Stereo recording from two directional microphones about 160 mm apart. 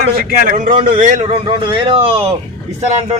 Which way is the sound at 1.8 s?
35° right (ahead or behind).